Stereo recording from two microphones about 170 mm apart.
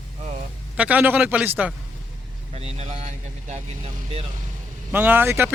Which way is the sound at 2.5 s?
40° right (ahead or behind).